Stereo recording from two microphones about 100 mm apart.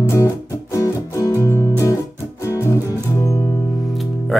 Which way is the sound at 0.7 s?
25° left (ahead or behind).